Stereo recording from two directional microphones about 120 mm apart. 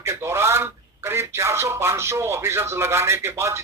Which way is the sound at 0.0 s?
25° right (ahead or behind).